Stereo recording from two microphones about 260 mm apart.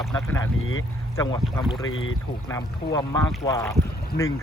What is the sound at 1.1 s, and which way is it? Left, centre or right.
Speech, centre.